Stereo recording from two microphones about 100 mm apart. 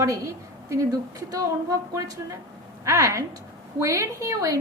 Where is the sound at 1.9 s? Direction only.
30° right (ahead or behind).